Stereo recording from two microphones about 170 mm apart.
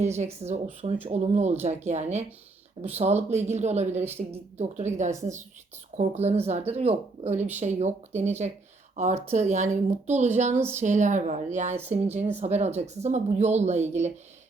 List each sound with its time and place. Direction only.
0.2 s a woman's voice: 40° right (ahead or behind)
10.5 s a woman's voice: 15° right (ahead or behind)
10.8 s a woman's voice: 45° right (ahead or behind)